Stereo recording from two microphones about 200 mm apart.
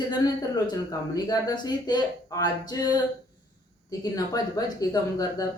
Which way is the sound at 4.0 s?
20° left (ahead or behind).